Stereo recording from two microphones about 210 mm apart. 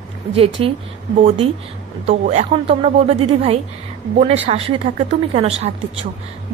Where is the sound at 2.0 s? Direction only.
30° right (ahead or behind).